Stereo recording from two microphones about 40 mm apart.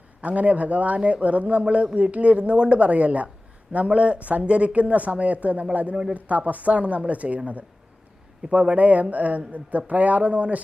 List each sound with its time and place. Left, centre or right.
0.2 s speech: right